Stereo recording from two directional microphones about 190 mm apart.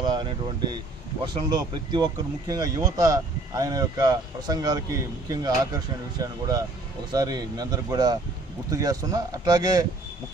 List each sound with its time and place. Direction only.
0.0 s speech: 20° right (ahead or behind)